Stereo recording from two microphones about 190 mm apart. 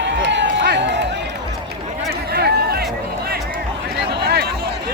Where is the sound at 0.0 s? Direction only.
70° right (ahead or behind).